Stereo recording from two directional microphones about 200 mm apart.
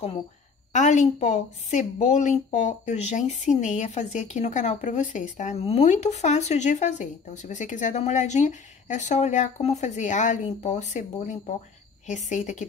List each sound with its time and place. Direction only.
0.7 s a woman's voice: 35° left (ahead or behind)